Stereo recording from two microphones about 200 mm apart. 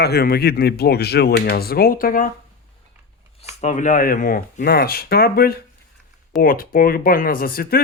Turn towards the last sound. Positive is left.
turn(degrees=50)  # may be behind; listen again after turning